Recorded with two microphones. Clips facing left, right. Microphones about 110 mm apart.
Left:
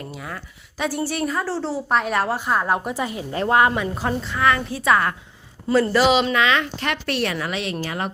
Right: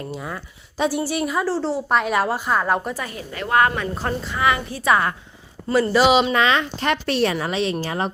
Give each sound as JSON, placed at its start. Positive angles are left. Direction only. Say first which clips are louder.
{"t": 0.1, "sound": "a woman's voice", "louder": "right 3 dB", "side_deg": -25}
{"t": 2.9, "sound": "speech", "louder": "left 4 dB", "side_deg": 20}
{"t": 3.3, "sound": "a woman's voice", "louder": "left 2 dB", "side_deg": 30}
{"t": 3.6, "sound": "speech", "louder": "left 1 dB", "side_deg": 10}
{"t": 4.2, "sound": "a woman's voice", "louder": "even", "side_deg": -5}
{"t": 5.9, "sound": "a woman's voice", "louder": "right 4 dB", "side_deg": -15}
{"t": 6.3, "sound": "speech", "louder": "right 1 dB", "side_deg": -30}